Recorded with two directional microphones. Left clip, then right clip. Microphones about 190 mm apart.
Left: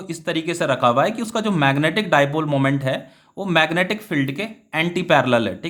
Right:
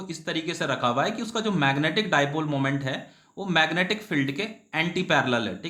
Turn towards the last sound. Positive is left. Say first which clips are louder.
# left 7 dB
turn(degrees=40)  # may be behind; listen again after turning